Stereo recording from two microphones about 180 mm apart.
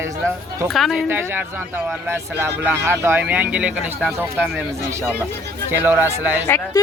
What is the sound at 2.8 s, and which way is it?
Speech, 15° right (ahead or behind).